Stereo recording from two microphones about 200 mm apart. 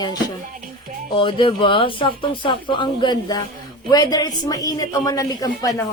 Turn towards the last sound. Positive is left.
turn(degrees=15)  # may be behind; listen again after turning